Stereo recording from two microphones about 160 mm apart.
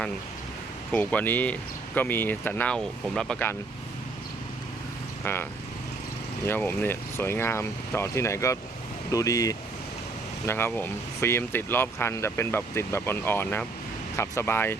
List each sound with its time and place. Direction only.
0.9 s speech: 10° left (ahead or behind)
5.2 s speech: 15° left (ahead or behind)